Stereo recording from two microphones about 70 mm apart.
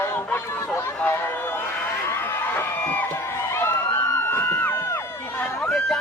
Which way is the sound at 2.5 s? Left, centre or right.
Left.